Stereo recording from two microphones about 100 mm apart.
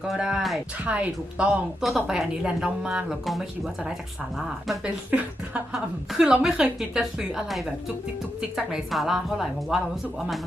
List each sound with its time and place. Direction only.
0.1 s speech: 5° right (ahead or behind)
0.9 s a woman's voice: 15° right (ahead or behind)
1.8 s speech: centre (ahead or behind)
5.1 s a woman's voice: 15° right (ahead or behind)
5.7 s a woman's voice: 5° right (ahead or behind)